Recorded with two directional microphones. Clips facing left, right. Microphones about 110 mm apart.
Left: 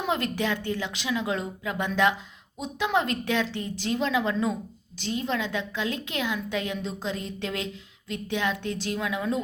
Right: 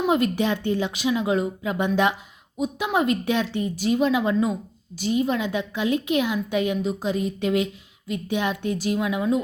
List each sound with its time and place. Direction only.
0.1 s a woman's voice: 15° right (ahead or behind)